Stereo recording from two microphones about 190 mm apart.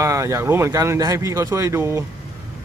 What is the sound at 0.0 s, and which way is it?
Speech, 15° right (ahead or behind).